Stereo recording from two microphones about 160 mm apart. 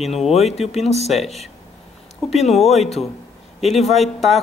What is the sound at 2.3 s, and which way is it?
Speech, 40° left (ahead or behind).